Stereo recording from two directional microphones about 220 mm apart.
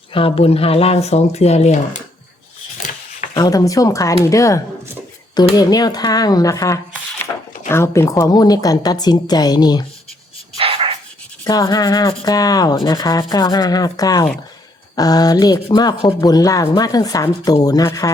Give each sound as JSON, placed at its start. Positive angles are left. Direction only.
{"t": 0.1, "sound": "speech", "side_deg": 25}
{"t": 3.3, "sound": "speech", "side_deg": 15}
{"t": 10.6, "sound": "dog", "side_deg": -25}
{"t": 11.4, "sound": "speech", "side_deg": 15}